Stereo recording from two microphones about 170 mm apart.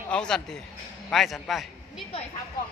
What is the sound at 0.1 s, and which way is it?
A man's voice, 5° left (ahead or behind).